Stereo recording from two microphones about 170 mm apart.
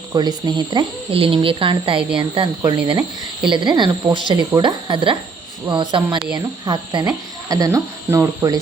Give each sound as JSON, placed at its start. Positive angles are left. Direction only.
{"t": 0.1, "sound": "speech", "side_deg": -25}